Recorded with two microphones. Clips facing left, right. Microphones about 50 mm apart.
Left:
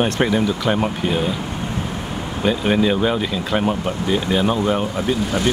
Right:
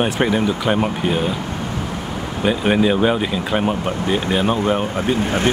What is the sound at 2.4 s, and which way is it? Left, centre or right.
Speech, centre.